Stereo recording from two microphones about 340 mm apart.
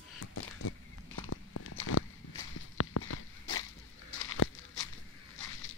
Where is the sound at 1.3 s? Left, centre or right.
Left.